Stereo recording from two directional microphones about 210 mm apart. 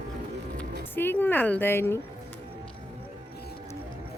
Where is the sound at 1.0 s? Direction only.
10° left (ahead or behind).